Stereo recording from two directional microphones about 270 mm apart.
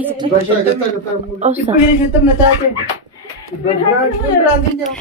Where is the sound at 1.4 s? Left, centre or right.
Right.